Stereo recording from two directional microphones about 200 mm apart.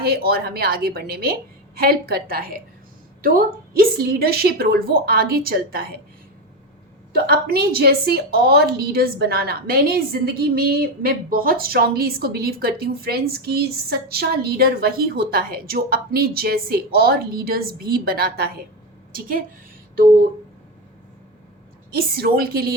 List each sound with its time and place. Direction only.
0.0 s a woman's voice: 50° right (ahead or behind)
7.3 s a woman's voice: 50° right (ahead or behind)
21.9 s a woman's voice: 50° right (ahead or behind)